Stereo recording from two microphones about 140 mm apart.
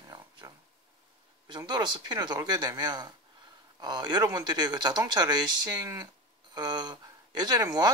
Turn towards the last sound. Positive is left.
turn(degrees=-25)  # may be behind; listen again after turning